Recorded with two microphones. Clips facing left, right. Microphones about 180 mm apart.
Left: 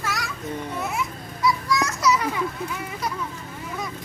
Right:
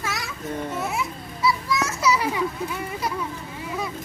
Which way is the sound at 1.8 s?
5° right (ahead or behind).